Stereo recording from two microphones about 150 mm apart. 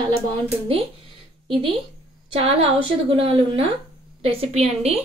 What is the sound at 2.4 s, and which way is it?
A woman's voice, 40° right (ahead or behind).